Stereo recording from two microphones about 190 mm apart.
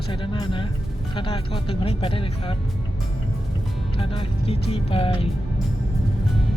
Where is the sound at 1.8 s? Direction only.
30° left (ahead or behind).